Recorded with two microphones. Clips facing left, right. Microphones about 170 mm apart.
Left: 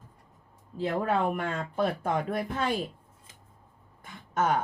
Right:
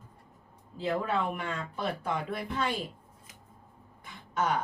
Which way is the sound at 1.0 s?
50° left (ahead or behind).